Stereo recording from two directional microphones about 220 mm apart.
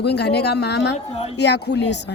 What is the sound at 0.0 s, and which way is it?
Speech, 50° left (ahead or behind).